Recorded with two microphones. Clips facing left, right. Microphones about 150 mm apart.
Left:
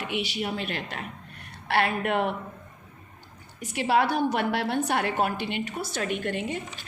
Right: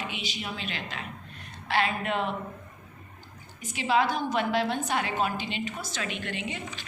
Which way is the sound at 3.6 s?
65° left (ahead or behind).